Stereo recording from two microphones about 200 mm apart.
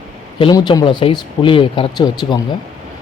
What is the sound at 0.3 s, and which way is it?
Speech, 25° left (ahead or behind).